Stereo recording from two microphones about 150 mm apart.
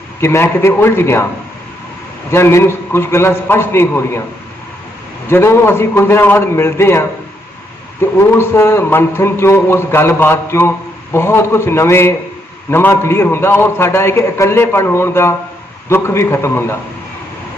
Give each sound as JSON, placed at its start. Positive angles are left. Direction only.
{"t": 0.2, "sound": "a man's voice", "side_deg": 15}
{"t": 2.3, "sound": "a man's voice", "side_deg": 15}
{"t": 5.3, "sound": "a man's voice", "side_deg": 15}
{"t": 8.2, "sound": "a man's voice", "side_deg": 15}